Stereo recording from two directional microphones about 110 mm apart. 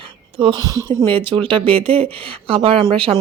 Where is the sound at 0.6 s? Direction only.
35° right (ahead or behind).